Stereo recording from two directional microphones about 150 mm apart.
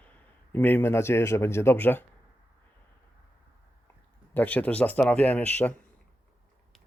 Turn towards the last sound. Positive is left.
turn(degrees=10)  # may be behind; listen again after turning